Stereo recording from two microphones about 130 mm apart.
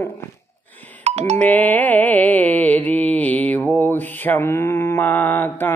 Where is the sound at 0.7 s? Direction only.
10° left (ahead or behind).